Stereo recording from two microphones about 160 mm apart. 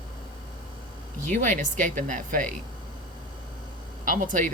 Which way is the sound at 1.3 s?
50° right (ahead or behind).